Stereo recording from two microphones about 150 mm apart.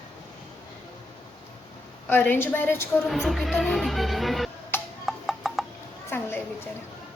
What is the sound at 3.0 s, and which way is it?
Music, centre (ahead or behind).